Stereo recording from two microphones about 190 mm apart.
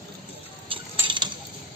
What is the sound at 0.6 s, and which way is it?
Cutlery, 25° right (ahead or behind).